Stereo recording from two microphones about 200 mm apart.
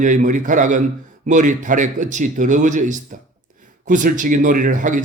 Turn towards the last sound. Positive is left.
turn(degrees=-40)  # may be behind; listen again after turning